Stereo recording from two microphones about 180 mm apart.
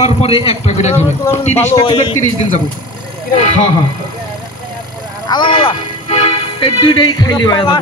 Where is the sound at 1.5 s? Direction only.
15° left (ahead or behind).